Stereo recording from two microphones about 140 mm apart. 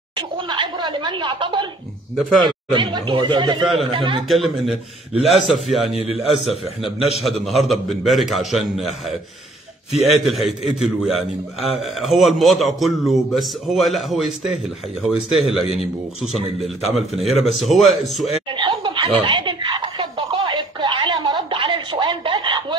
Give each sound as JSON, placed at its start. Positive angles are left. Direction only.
{"t": 0.1, "sound": "speech", "side_deg": -35}
{"t": 2.1, "sound": "a man's voice", "side_deg": 0}
{"t": 2.7, "sound": "speech", "side_deg": -35}
{"t": 4.3, "sound": "a man's voice", "side_deg": 0}
{"t": 18.5, "sound": "snicker", "side_deg": -35}